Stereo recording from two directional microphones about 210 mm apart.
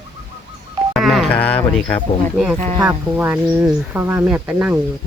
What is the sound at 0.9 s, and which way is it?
Speech, centre (ahead or behind).